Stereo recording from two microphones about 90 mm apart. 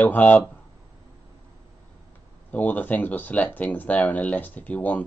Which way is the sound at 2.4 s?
20° left (ahead or behind).